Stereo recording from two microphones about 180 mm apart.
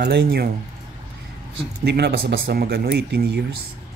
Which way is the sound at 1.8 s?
65° right (ahead or behind).